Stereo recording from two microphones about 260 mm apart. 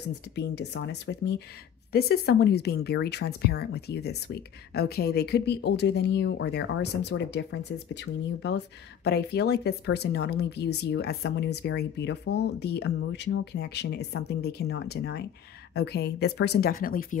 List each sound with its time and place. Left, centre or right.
0.4 s speech: left